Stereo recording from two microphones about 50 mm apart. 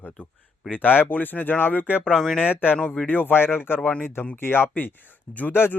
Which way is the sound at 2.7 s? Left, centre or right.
Left.